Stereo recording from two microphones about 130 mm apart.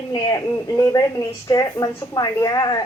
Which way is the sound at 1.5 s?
30° left (ahead or behind).